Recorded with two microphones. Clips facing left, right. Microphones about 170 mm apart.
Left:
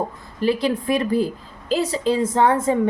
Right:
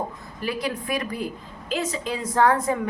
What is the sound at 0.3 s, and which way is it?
A woman's voice, 30° left (ahead or behind).